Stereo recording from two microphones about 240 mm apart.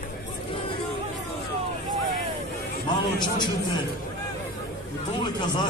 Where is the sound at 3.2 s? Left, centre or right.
Centre.